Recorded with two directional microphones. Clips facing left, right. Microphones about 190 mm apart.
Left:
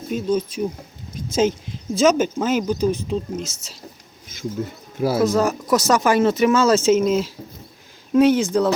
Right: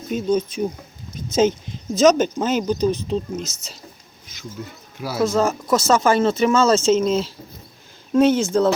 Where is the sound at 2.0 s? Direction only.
5° left (ahead or behind).